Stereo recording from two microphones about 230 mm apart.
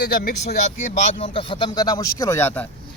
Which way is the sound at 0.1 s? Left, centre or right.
Left.